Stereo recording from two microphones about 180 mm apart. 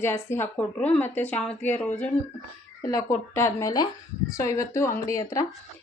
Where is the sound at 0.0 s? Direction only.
15° left (ahead or behind).